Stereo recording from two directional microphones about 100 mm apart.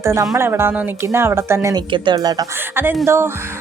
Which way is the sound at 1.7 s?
45° right (ahead or behind).